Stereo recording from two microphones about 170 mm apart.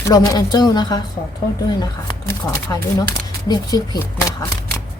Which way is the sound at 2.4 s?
20° left (ahead or behind).